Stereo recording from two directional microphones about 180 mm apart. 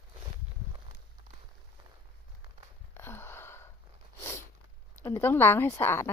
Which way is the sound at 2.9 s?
10° left (ahead or behind).